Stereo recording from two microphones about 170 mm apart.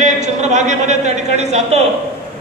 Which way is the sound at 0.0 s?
45° right (ahead or behind).